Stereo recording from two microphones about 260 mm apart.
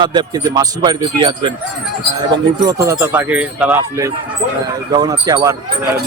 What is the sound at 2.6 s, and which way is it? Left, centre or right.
Speech, centre.